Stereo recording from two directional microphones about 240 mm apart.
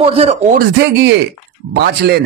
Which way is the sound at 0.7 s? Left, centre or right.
Right.